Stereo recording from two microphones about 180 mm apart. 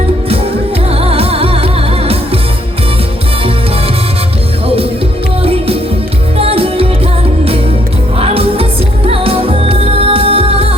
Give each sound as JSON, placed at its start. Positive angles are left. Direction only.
{"t": 0.9, "sound": "music", "side_deg": -35}
{"t": 5.4, "sound": "music", "side_deg": -35}
{"t": 8.2, "sound": "music", "side_deg": -35}